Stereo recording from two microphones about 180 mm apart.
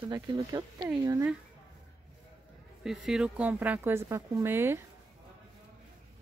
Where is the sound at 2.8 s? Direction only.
Centre (ahead or behind).